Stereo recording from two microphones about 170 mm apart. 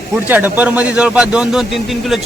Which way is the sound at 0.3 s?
10° right (ahead or behind).